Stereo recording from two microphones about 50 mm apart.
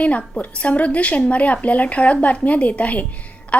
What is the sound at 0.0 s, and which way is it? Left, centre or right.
A woman's voice, left.